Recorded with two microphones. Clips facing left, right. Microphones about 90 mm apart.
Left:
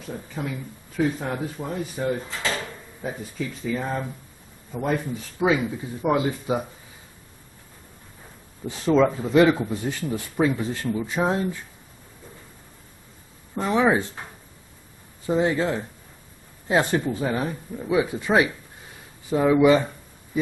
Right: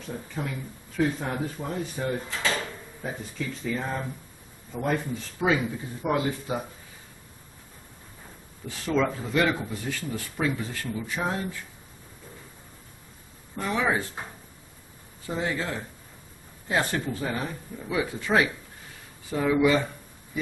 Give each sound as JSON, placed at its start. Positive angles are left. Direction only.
{"t": 0.0, "sound": "a man's voice", "side_deg": 5}
{"t": 6.0, "sound": "a man's voice", "side_deg": 15}
{"t": 8.6, "sound": "speech", "side_deg": 20}
{"t": 13.6, "sound": "speech", "side_deg": 25}
{"t": 15.2, "sound": "speech", "side_deg": 25}